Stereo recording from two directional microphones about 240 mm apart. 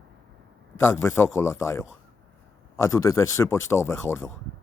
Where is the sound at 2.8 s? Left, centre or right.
Centre.